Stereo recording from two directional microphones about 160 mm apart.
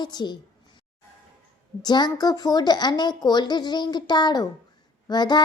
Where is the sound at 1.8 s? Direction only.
25° left (ahead or behind).